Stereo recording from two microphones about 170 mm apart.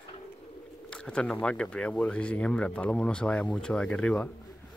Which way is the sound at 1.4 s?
5° left (ahead or behind).